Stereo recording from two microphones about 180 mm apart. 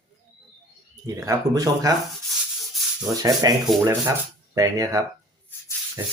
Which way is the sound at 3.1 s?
20° right (ahead or behind).